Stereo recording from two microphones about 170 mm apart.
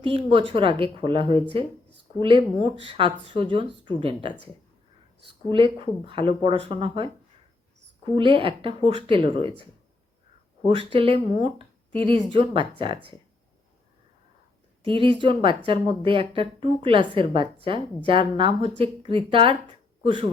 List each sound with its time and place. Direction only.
0.0 s a woman's voice: 30° right (ahead or behind)
5.5 s a woman's voice: 30° right (ahead or behind)
8.1 s a woman's voice: 30° right (ahead or behind)
10.9 s a woman's voice: 35° right (ahead or behind)
14.8 s a woman's voice: 30° right (ahead or behind)